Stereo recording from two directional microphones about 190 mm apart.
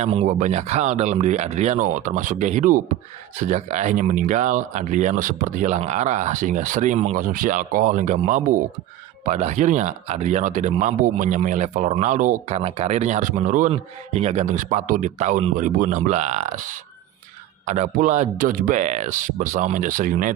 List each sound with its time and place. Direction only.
0.0 s a man's voice: 35° right (ahead or behind)